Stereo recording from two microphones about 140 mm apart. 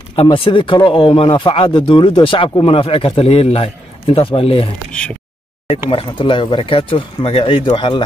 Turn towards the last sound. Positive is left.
turn(degrees=35)  # may be behind; listen again after turning